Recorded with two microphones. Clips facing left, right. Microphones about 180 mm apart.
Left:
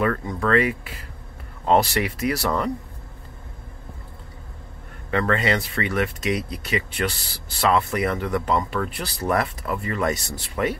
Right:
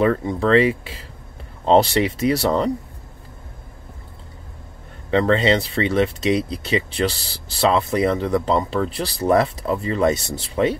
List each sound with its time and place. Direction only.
0.0 s speech: 25° right (ahead or behind)
5.1 s speech: 25° right (ahead or behind)